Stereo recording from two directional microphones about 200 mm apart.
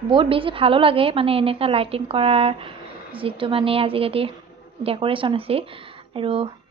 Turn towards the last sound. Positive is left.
turn(degrees=-25)  # may be behind; listen again after turning